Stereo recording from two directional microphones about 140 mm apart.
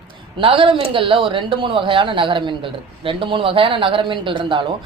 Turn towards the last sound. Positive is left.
turn(degrees=-35)  # may be behind; listen again after turning